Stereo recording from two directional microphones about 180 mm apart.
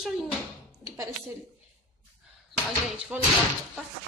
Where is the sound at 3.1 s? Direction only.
10° right (ahead or behind).